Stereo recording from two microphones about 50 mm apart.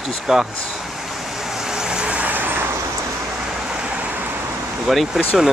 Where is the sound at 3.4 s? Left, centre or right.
Centre.